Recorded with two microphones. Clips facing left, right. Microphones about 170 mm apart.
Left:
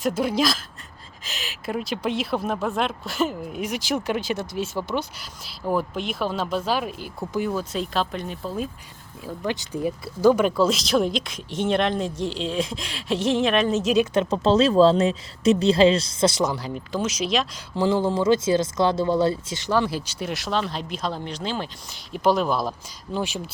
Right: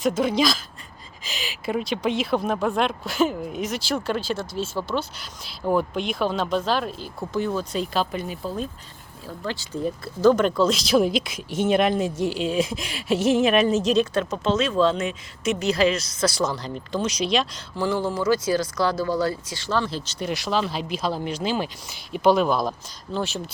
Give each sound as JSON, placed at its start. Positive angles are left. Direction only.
{"t": 0.0, "sound": "speech", "side_deg": 5}
{"t": 3.6, "sound": "speech", "side_deg": 15}
{"t": 5.5, "sound": "speech", "side_deg": 0}
{"t": 9.2, "sound": "speech", "side_deg": 15}
{"t": 13.9, "sound": "speech", "side_deg": 20}
{"t": 14.4, "sound": "speech", "side_deg": 35}
{"t": 17.7, "sound": "speech", "side_deg": 20}
{"t": 23.1, "sound": "speech", "side_deg": 10}